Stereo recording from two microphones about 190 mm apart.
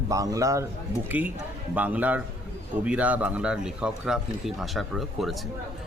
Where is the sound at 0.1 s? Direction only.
15° right (ahead or behind).